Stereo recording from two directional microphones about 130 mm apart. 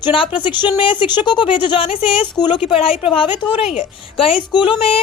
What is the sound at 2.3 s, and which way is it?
Speech, 35° left (ahead or behind).